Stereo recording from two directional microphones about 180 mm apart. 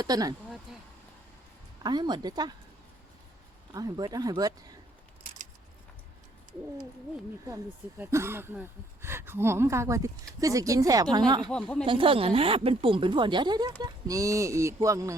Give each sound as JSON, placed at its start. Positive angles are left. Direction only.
{"t": 0.0, "sound": "a woman's voice", "side_deg": -20}
{"t": 1.8, "sound": "a woman's voice", "side_deg": -25}
{"t": 3.7, "sound": "a woman's voice", "side_deg": -20}
{"t": 7.4, "sound": "a woman's voice", "side_deg": -15}
{"t": 11.5, "sound": "speech", "side_deg": 5}
{"t": 11.9, "sound": "a woman's voice", "side_deg": -30}